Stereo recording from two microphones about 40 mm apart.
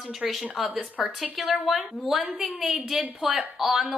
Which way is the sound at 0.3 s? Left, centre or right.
Centre.